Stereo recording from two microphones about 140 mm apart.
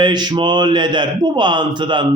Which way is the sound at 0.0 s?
30° right (ahead or behind).